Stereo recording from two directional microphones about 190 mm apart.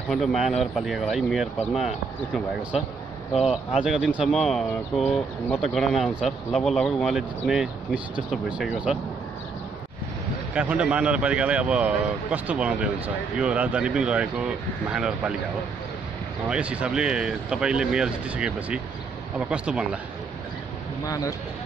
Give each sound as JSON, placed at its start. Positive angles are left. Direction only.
{"t": 0.1, "sound": "speech", "side_deg": 0}
{"t": 3.4, "sound": "speech", "side_deg": -5}
{"t": 10.5, "sound": "speech", "side_deg": -5}
{"t": 16.4, "sound": "speech", "side_deg": -5}
{"t": 21.0, "sound": "speech", "side_deg": 15}